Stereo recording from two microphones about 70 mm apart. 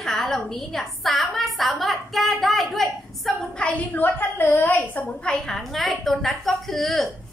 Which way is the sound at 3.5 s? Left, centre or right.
Centre.